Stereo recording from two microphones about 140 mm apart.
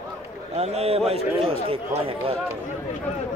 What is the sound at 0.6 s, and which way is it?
A man's voice, 45° right (ahead or behind).